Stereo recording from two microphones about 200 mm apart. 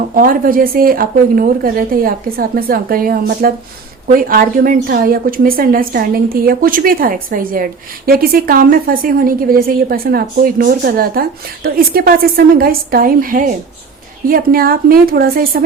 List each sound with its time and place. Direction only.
0.1 s a woman's voice: 45° right (ahead or behind)